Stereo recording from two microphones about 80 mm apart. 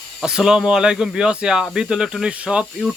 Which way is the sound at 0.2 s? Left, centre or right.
Centre.